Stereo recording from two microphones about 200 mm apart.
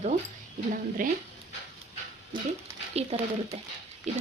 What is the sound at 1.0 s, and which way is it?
Speech, 40° right (ahead or behind).